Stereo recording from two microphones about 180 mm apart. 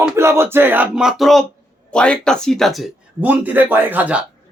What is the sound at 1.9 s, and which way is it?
Speech, 5° left (ahead or behind).